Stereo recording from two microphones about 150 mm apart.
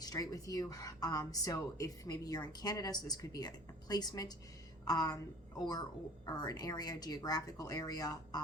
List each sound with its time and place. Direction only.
0.0 s speech: 25° left (ahead or behind)